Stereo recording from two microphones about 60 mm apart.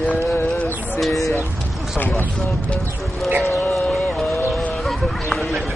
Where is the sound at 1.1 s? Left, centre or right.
Left.